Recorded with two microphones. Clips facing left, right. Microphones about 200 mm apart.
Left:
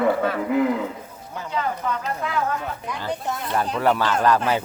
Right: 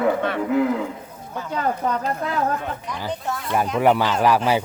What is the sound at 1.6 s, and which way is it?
Speech, 40° right (ahead or behind).